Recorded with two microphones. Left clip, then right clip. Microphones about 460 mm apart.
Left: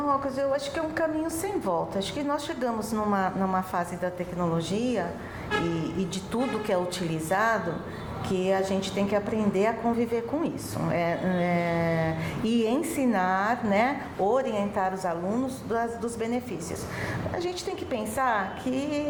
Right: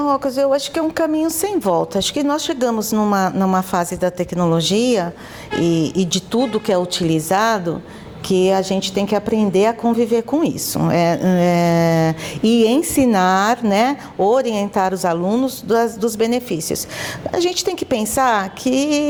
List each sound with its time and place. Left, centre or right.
0.0 s speech: right